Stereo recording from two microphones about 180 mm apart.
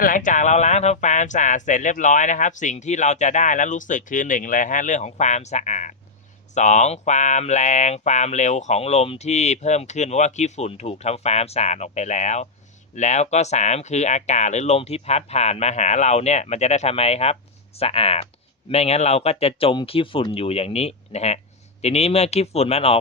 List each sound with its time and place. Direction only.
0.0 s speech: 45° left (ahead or behind)